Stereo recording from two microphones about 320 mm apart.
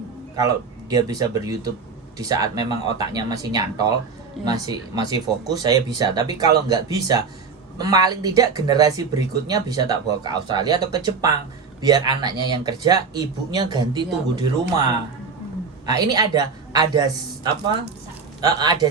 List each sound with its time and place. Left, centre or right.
0.3 s speech: centre
15.9 s speech: centre